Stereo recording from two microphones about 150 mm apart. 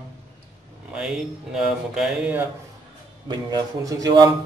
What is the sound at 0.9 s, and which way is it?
Speech, 5° right (ahead or behind).